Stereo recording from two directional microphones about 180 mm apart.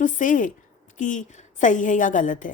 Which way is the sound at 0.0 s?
45° left (ahead or behind).